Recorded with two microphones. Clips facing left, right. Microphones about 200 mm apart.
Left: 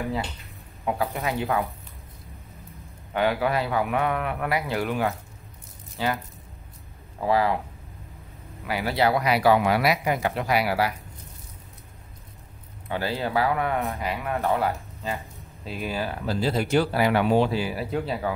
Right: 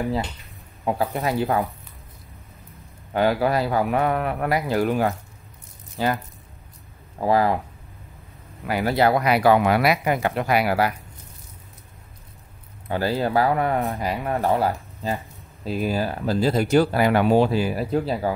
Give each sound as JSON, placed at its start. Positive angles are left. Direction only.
{"t": 0.8, "sound": "speech", "side_deg": -35}
{"t": 3.1, "sound": "speech", "side_deg": -40}
{"t": 7.2, "sound": "speech", "side_deg": -45}
{"t": 8.6, "sound": "speech", "side_deg": -45}
{"t": 12.8, "sound": "speech", "side_deg": -40}